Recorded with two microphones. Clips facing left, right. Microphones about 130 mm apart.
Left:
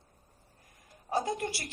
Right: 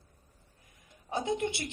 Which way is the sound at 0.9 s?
40° left (ahead or behind).